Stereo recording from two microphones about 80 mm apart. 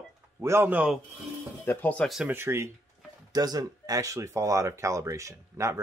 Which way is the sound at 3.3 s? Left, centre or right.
Right.